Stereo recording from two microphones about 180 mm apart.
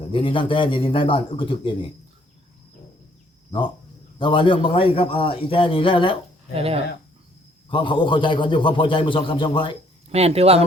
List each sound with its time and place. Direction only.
0.1 s a man's voice: 30° left (ahead or behind)
4.2 s a man's voice: 30° left (ahead or behind)
6.5 s speech: 35° right (ahead or behind)
7.7 s a man's voice: 30° left (ahead or behind)
10.1 s speech: 35° right (ahead or behind)